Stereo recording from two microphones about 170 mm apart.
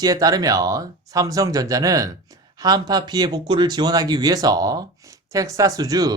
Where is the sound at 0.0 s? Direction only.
20° right (ahead or behind).